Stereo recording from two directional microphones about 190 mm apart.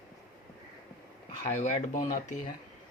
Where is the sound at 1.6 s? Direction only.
40° left (ahead or behind).